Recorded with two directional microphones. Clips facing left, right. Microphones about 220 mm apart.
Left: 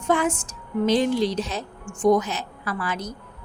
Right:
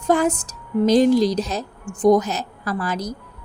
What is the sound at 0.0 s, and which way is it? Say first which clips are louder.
Speech: right 4 dB; 40° right (ahead or behind).